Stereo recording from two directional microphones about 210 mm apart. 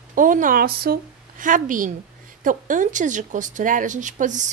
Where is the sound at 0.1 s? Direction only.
40° right (ahead or behind).